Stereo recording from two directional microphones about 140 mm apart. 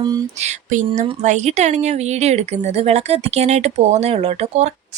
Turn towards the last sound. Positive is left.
turn(degrees=-45)  # may be behind; listen again after turning